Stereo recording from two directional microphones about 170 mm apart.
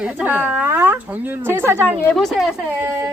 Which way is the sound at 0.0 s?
10° right (ahead or behind).